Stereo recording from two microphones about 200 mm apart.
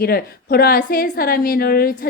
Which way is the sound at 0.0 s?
50° left (ahead or behind).